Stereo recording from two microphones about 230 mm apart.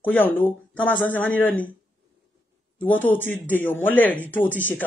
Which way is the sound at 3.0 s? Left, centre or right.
Centre.